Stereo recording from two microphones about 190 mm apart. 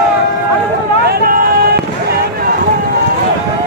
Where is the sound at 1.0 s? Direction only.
55° right (ahead or behind).